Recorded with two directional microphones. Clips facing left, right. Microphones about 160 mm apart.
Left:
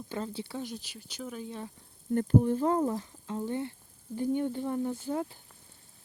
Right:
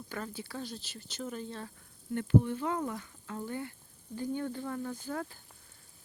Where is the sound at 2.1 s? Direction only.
40° left (ahead or behind).